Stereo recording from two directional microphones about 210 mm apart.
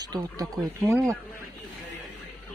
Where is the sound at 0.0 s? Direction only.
20° right (ahead or behind).